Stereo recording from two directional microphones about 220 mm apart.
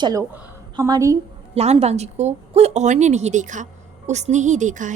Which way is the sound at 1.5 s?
30° right (ahead or behind).